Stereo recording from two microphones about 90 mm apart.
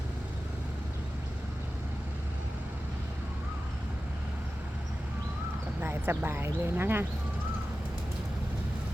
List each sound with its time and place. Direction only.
5.8 s speech: 25° right (ahead or behind)